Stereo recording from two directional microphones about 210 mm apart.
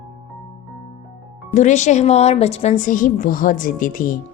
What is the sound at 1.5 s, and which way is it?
A woman's voice, 35° left (ahead or behind).